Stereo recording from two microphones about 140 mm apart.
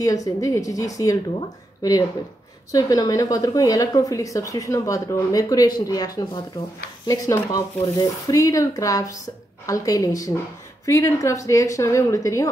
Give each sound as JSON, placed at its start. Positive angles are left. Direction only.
{"t": 0.0, "sound": "speech", "side_deg": 25}